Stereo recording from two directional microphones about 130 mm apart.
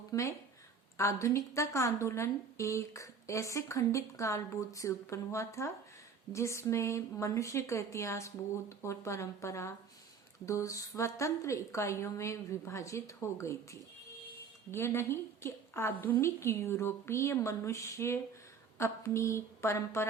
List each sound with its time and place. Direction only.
0.1 s a woman's voice: 25° left (ahead or behind)